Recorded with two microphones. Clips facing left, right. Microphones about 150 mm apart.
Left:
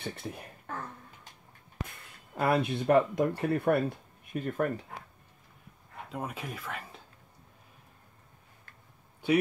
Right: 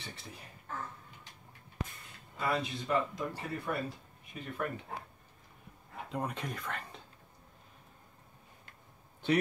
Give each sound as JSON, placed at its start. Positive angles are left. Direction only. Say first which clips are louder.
{"t": 0.0, "sound": "speech", "louder": "left 10 dB", "side_deg": 55}
{"t": 2.3, "sound": "speech", "louder": "left 7 dB", "side_deg": 60}
{"t": 6.0, "sound": "speech", "louder": "even", "side_deg": 5}
{"t": 9.2, "sound": "speech", "louder": "left 3 dB", "side_deg": 10}